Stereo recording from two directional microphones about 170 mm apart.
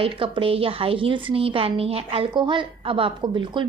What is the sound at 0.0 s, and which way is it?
A woman's voice, 30° right (ahead or behind).